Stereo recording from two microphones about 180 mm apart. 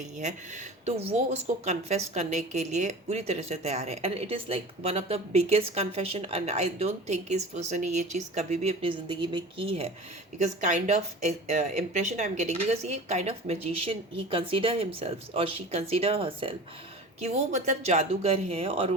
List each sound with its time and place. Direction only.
0.2 s speech: 40° right (ahead or behind)
10.3 s speech: 40° right (ahead or behind)